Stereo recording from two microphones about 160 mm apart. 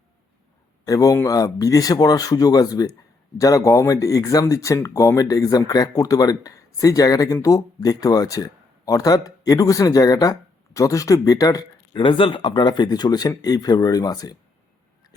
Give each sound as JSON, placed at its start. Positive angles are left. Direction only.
{"t": 0.9, "sound": "speech", "side_deg": 20}